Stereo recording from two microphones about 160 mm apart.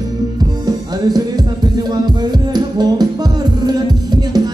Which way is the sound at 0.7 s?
25° right (ahead or behind).